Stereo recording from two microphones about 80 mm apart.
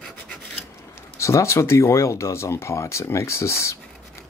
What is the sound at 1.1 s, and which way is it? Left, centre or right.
Speech, left.